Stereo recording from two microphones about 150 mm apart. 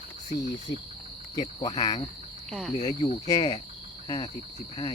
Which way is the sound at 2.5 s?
Centre (ahead or behind).